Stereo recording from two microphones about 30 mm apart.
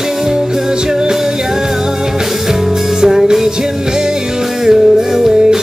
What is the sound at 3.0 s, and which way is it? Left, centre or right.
Music, centre.